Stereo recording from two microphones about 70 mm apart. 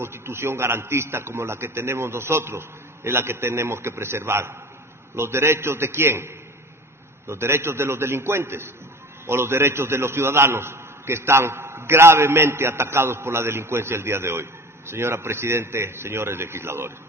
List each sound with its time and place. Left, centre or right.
0.0 s a man's voice: right